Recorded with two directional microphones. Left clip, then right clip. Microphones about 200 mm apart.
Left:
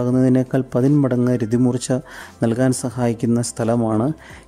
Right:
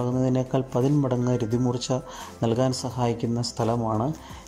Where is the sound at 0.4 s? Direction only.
25° left (ahead or behind).